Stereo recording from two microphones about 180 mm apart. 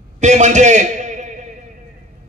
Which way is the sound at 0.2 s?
40° right (ahead or behind).